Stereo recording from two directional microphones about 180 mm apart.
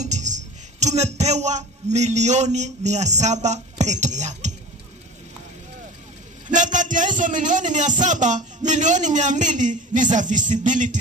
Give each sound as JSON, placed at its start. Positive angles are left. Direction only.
{"t": 0.0, "sound": "speech", "side_deg": -40}
{"t": 6.5, "sound": "a man's voice", "side_deg": -45}